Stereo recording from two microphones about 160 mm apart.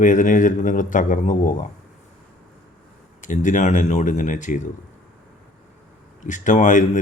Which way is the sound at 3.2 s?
50° left (ahead or behind).